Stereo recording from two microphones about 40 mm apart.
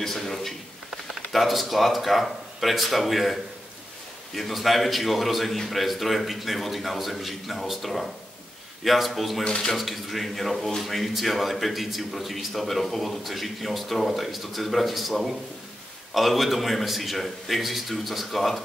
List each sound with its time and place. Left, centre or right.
0.0 s a sound: centre
0.8 s speech: centre
4.4 s a man's voice: centre
9.4 s speech: left
9.7 s a man's voice: centre